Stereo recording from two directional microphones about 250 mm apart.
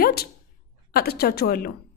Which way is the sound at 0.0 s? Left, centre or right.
Left.